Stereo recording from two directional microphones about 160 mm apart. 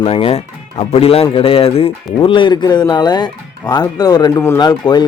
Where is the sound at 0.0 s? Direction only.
35° left (ahead or behind).